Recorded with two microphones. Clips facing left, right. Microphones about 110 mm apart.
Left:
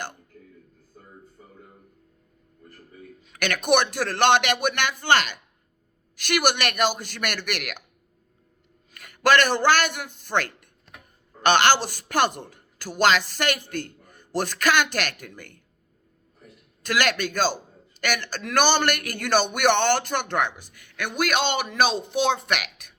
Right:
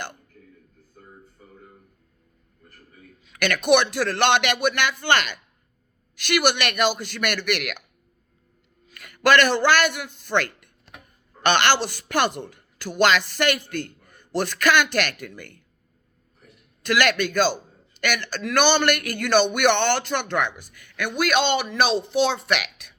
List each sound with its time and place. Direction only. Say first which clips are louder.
3.2 s a man's voice: right 3 dB; 50° left (ahead or behind)
8.9 s a man's voice: right 1 dB; 45° left (ahead or behind)
11.4 s a man's voice: left 1 dB; 45° left (ahead or behind)
16.8 s a man's voice: right 3 dB; 45° left (ahead or behind)
20.6 s speech: right 2 dB; 50° right (ahead or behind)
21.2 s a man's voice: right 3 dB; 45° left (ahead or behind)